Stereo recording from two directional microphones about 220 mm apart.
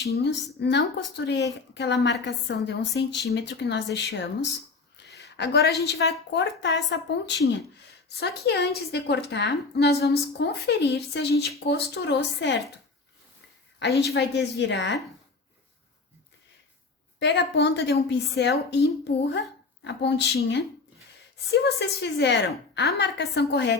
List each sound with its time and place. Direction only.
0.0 s a woman's voice: 50° left (ahead or behind)
13.7 s a woman's voice: 50° left (ahead or behind)
17.2 s a woman's voice: 50° left (ahead or behind)